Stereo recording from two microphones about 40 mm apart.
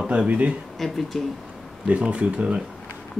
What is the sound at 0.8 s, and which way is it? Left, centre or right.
Speech, centre.